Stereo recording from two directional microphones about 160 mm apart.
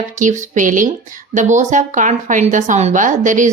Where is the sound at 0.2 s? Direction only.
50° right (ahead or behind).